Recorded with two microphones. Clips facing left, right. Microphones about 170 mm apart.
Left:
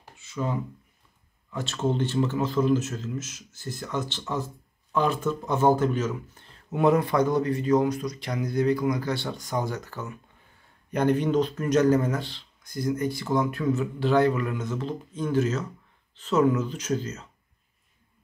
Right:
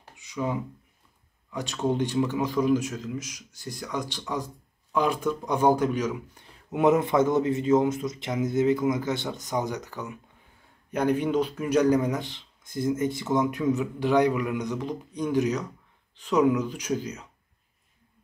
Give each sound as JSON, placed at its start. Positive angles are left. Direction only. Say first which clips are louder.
{"t": 0.1, "sound": "a sound", "louder": "right 1 dB", "side_deg": -15}
{"t": 1.5, "sound": "speech", "louder": "even", "side_deg": -15}
{"t": 10.9, "sound": "speech", "louder": "left 1 dB", "side_deg": -5}